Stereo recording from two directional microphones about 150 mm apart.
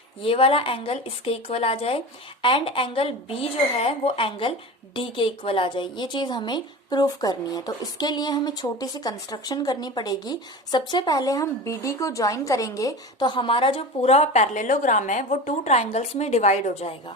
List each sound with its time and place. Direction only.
0.2 s a woman's voice: 40° left (ahead or behind)